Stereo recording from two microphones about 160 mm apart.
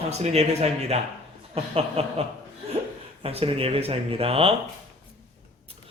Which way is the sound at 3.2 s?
35° right (ahead or behind).